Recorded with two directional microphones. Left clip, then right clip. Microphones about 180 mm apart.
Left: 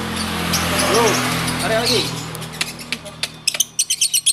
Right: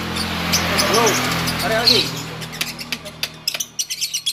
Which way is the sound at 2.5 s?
Centre (ahead or behind).